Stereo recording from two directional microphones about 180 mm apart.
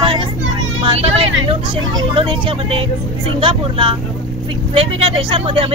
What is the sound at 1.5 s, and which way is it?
Speech, 30° right (ahead or behind).